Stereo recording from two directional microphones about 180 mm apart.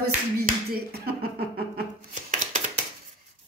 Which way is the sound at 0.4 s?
60° right (ahead or behind).